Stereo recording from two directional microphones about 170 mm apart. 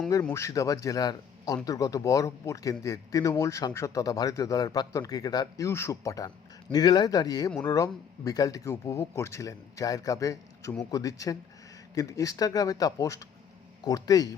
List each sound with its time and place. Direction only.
0.3 s a man's voice: 20° left (ahead or behind)